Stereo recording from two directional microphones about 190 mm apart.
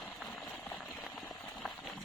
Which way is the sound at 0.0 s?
5° left (ahead or behind).